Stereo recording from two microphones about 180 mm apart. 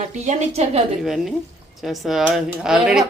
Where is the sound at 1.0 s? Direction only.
Centre (ahead or behind).